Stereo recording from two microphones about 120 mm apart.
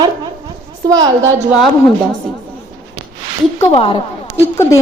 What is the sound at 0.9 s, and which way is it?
Speech, 30° right (ahead or behind).